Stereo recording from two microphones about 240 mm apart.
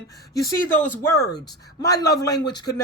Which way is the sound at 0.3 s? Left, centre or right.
Centre.